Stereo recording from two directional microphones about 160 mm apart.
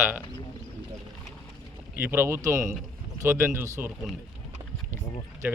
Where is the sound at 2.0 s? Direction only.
15° right (ahead or behind).